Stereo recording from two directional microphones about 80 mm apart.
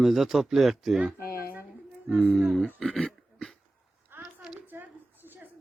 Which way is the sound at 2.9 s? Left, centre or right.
Centre.